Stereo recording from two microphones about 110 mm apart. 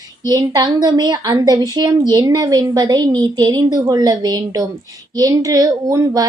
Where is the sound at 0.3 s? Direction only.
35° right (ahead or behind).